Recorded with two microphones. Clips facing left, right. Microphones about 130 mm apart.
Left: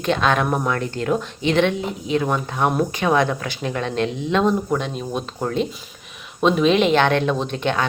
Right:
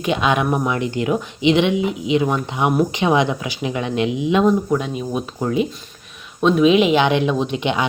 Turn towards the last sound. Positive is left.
turn(degrees=-15)  # may be behind; listen again after turning